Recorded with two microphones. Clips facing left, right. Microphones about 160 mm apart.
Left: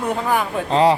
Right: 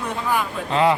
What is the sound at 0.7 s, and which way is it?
Speech, 30° left (ahead or behind).